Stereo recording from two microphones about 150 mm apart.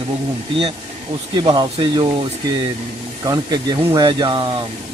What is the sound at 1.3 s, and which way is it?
Speech, 30° right (ahead or behind).